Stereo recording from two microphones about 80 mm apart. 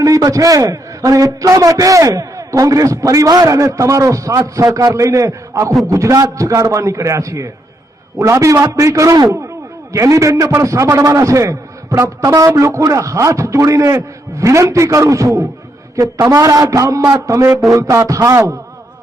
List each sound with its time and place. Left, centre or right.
0.0 s a man's voice: right